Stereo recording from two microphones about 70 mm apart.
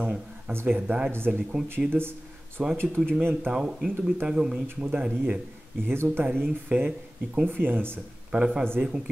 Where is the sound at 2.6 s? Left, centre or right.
Centre.